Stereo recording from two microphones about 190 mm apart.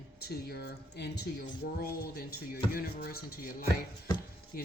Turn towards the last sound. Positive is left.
turn(degrees=50)  # may be behind; listen again after turning